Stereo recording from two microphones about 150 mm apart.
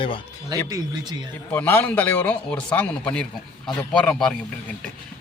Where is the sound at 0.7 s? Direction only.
25° right (ahead or behind).